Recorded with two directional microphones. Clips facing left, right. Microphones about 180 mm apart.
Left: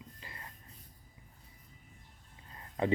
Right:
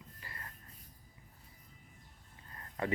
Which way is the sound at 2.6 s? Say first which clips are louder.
Left 5 dB; 20° left (ahead or behind).